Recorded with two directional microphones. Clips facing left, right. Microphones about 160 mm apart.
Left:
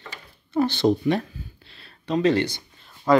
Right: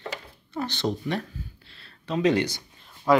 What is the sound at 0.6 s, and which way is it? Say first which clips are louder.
Speech: left 8 dB; 15° left (ahead or behind).